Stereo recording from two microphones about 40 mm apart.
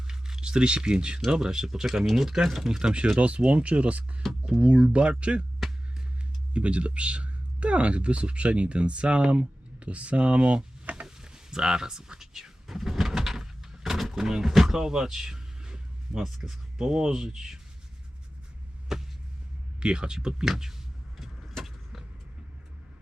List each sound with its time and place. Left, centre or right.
0.1 s speech: centre
2.8 s speech: right
4.4 s speech: right
4.7 s speech: right
6.5 s speech: right
11.0 s a sound: centre
18.9 s hum: centre
19.8 s speech: right
20.4 s speech: centre
21.2 s vehicle: centre